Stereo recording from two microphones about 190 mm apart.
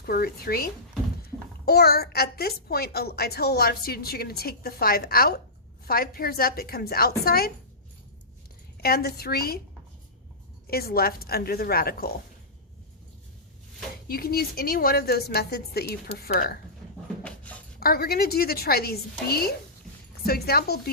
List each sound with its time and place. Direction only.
0.0 s a woman's voice: 55° left (ahead or behind)
8.8 s a woman's voice: 55° left (ahead or behind)
10.7 s a woman's voice: 55° left (ahead or behind)
14.1 s a woman's voice: 55° left (ahead or behind)
17.2 s a sound: 5° left (ahead or behind)
17.7 s a woman's voice: 50° left (ahead or behind)